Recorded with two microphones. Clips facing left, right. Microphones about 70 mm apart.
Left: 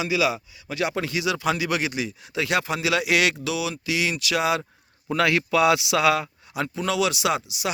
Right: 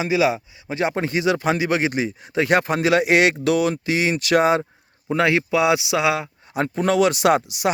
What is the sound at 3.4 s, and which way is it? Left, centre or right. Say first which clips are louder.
Speech: right 8 dB; right.